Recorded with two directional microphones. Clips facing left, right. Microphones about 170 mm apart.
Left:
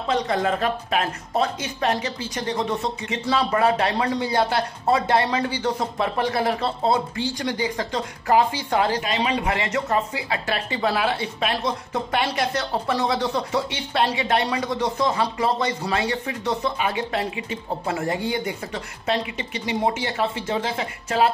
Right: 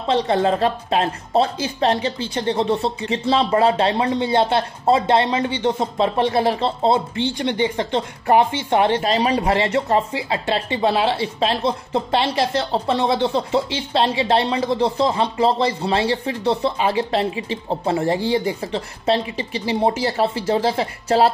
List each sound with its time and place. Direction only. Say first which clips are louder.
0.0 s speech: right 4 dB; 30° right (ahead or behind)